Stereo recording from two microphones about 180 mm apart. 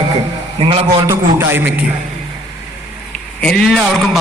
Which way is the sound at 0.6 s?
30° right (ahead or behind).